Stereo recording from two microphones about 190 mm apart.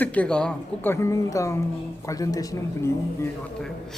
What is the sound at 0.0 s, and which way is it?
Speech, 5° left (ahead or behind).